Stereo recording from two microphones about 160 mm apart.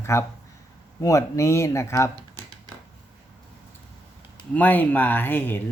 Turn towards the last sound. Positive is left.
turn(degrees=10)  # may be behind; listen again after turning